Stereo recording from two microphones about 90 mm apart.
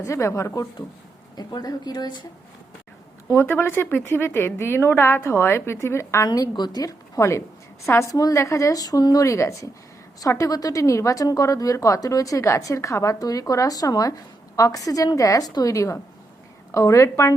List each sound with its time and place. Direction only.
0.0 s a woman's voice: 35° left (ahead or behind)
1.4 s speech: 50° left (ahead or behind)
3.3 s a woman's voice: 25° left (ahead or behind)